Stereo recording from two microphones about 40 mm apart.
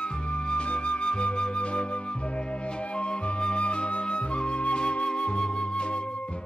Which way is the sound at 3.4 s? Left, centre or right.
Left.